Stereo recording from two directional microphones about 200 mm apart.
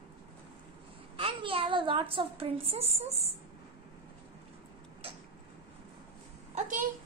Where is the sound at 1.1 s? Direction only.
25° right (ahead or behind).